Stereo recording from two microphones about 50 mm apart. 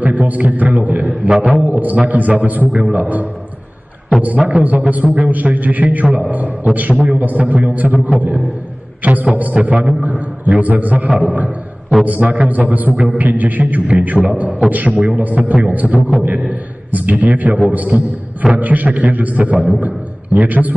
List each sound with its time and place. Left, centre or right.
0.0 s a man's voice: right